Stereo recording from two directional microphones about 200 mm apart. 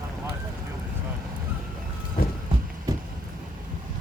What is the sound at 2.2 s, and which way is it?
Vehicle, 45° left (ahead or behind).